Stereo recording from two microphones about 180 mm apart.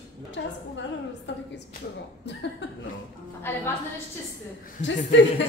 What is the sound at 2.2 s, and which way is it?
Speech, 70° left (ahead or behind).